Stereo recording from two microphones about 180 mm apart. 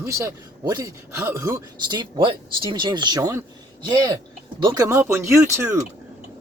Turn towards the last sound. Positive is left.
turn(degrees=-15)  # may be behind; listen again after turning